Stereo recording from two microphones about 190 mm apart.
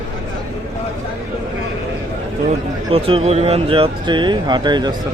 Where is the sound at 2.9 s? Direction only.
30° right (ahead or behind).